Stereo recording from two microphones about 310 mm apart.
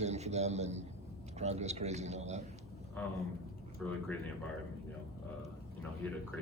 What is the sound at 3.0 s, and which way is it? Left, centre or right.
Speech, centre.